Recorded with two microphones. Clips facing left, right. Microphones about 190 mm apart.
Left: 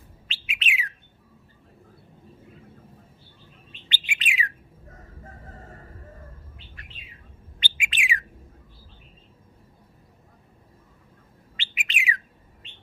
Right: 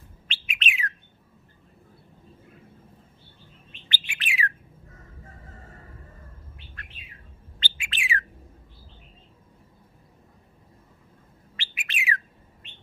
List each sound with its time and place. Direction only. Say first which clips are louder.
0.3 s bird: right 2 dB; 5° left (ahead or behind)
3.8 s bird: left 2 dB; 20° left (ahead or behind)
7.6 s bird: left 3 dB; 15° left (ahead or behind)
11.5 s bird: left 2 dB; 15° left (ahead or behind)